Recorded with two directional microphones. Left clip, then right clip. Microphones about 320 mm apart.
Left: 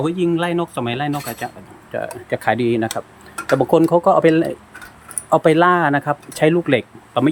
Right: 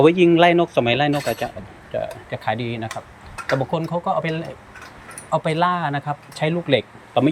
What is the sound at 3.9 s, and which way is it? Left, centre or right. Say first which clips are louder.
Speech: left 9 dB; left.